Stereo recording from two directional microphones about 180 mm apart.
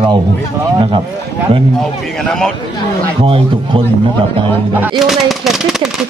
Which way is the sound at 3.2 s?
30° right (ahead or behind).